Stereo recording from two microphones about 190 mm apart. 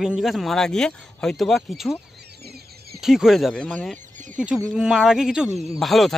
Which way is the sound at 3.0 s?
Centre (ahead or behind).